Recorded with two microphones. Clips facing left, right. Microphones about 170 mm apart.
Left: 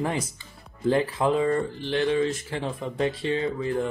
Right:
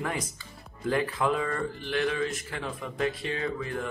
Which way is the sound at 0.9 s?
30° left (ahead or behind).